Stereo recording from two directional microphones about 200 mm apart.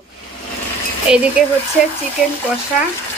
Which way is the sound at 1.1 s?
5° right (ahead or behind).